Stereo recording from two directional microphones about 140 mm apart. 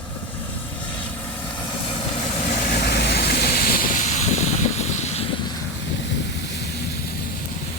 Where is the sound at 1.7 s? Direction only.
40° left (ahead or behind).